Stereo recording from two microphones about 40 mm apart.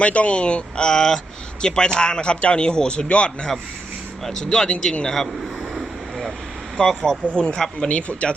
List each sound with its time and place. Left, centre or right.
0.0 s speech: left
4.4 s speech: left
5.7 s vehicle: centre
6.7 s speech: centre
7.9 s speech: left